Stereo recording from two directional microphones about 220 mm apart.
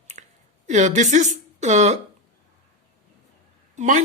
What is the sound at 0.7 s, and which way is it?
A woman's voice, 35° right (ahead or behind).